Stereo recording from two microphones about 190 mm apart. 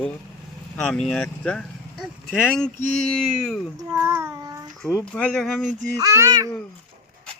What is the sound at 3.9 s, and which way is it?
Child singing, 15° right (ahead or behind).